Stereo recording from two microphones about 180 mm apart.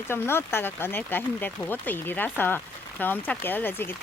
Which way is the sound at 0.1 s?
15° left (ahead or behind).